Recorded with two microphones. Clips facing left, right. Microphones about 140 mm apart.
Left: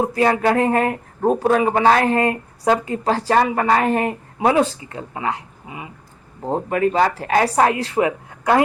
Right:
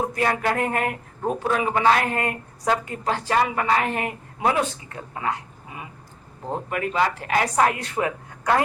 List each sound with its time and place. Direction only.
0.0 s speech: 30° left (ahead or behind)
6.4 s speech: 35° left (ahead or behind)